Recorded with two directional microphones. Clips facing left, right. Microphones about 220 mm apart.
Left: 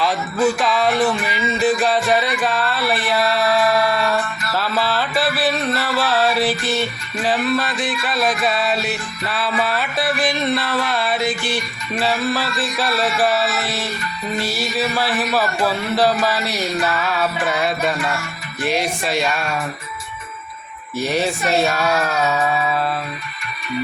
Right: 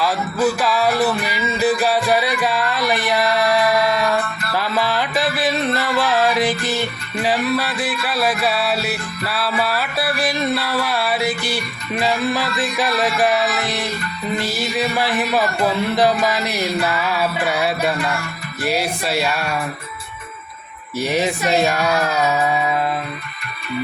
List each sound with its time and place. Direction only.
0.0 s music: 5° right (ahead or behind)
21.0 s music: 15° right (ahead or behind)